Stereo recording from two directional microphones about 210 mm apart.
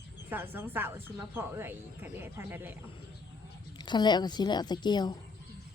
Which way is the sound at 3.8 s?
20° left (ahead or behind).